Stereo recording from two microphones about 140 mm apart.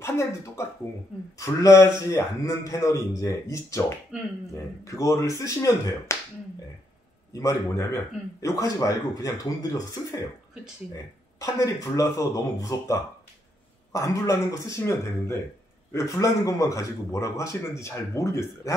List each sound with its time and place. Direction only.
0.0 s a man's voice: 20° left (ahead or behind)
4.1 s speech: 5° right (ahead or behind)
4.8 s a man's voice: 20° left (ahead or behind)
7.3 s a man's voice: 20° left (ahead or behind)
11.3 s a man's voice: 25° left (ahead or behind)